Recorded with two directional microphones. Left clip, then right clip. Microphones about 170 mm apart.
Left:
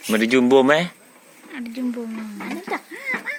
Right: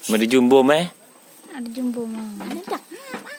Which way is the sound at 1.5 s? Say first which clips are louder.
Even; 70° right (ahead or behind).